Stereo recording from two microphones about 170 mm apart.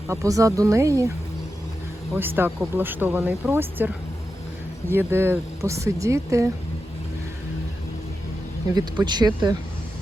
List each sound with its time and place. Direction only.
0.1 s a woman's voice: 20° right (ahead or behind)
2.1 s speech: 10° right (ahead or behind)
8.7 s a woman's voice: 25° right (ahead or behind)